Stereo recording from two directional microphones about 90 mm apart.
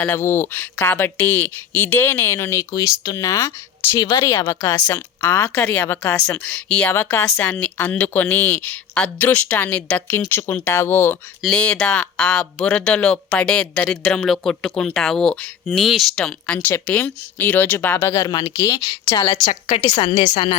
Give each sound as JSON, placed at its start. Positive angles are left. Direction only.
{"t": 0.0, "sound": "speech", "side_deg": 25}
{"t": 2.7, "sound": "speech", "side_deg": 40}
{"t": 5.8, "sound": "speech", "side_deg": 25}
{"t": 6.9, "sound": "speech", "side_deg": 25}
{"t": 10.2, "sound": "speech", "side_deg": 25}
{"t": 11.4, "sound": "speech", "side_deg": 10}
{"t": 15.6, "sound": "speech", "side_deg": 0}
{"t": 16.1, "sound": "speech", "side_deg": 10}
{"t": 18.2, "sound": "speech", "side_deg": 45}
{"t": 18.7, "sound": "a woman's voice", "side_deg": 60}
{"t": 19.5, "sound": "a woman's voice", "side_deg": 90}
{"t": 20.1, "sound": "speech", "side_deg": 65}